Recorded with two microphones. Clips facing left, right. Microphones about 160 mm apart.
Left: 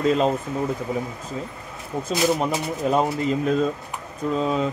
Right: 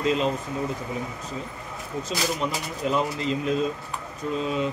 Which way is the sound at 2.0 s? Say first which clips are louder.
Left 7 dB; 50° left (ahead or behind).